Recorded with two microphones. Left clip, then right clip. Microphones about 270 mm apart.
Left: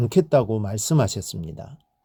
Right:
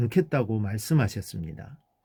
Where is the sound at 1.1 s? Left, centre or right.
Left.